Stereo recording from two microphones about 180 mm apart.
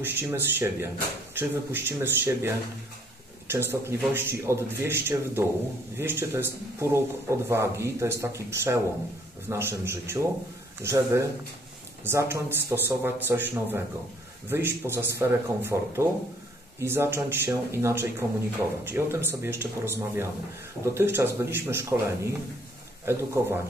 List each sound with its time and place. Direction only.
0.0 s speech: 10° right (ahead or behind)